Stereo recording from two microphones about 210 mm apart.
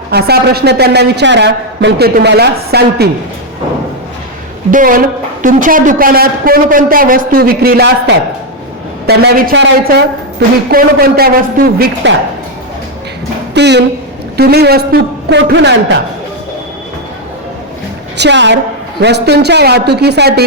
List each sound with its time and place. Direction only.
0.1 s a woman's voice: 50° right (ahead or behind)
4.7 s a woman's voice: 40° right (ahead or behind)
9.6 s a woman's voice: 55° right (ahead or behind)
13.5 s a woman's voice: 55° right (ahead or behind)
18.2 s a woman's voice: 55° right (ahead or behind)